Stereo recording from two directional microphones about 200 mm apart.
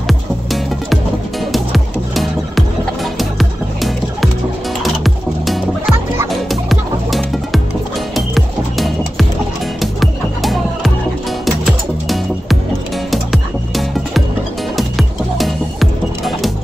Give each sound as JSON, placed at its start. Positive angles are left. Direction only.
{"t": 1.4, "sound": "music", "side_deg": 0}